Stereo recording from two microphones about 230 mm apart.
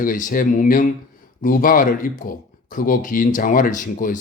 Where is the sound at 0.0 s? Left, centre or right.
Left.